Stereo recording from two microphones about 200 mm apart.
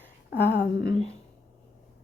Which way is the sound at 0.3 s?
55° left (ahead or behind).